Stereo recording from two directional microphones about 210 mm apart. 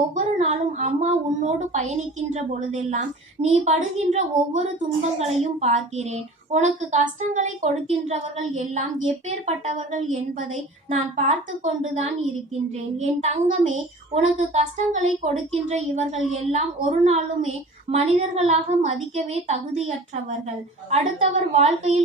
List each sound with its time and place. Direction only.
0.1 s a woman's voice: 35° right (ahead or behind)
20.9 s a woman's voice: 30° right (ahead or behind)